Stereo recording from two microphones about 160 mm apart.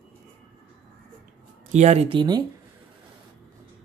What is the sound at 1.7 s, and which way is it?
Speech, 45° right (ahead or behind).